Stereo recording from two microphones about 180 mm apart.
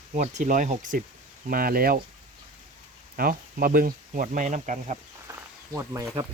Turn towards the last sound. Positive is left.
turn(degrees=-15)  # may be behind; listen again after turning